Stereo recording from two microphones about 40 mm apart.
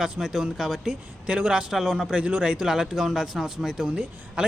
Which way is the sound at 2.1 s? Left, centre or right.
Right.